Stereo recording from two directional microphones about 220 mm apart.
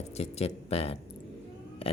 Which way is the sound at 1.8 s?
25° left (ahead or behind).